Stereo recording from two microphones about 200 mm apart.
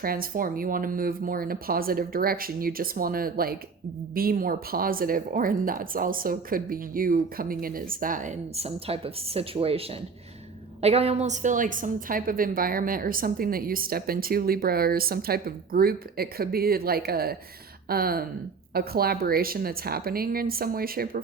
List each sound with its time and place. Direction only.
0.0 s a woman's voice: 45° right (ahead or behind)